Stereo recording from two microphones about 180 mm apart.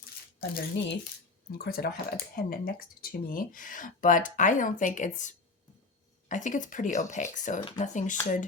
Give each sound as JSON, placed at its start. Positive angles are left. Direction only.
{"t": 0.3, "sound": "speech", "side_deg": 55}